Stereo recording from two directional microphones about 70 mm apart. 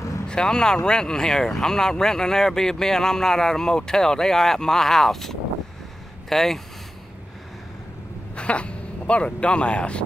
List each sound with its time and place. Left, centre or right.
0.3 s speech: centre
8.4 s speech: centre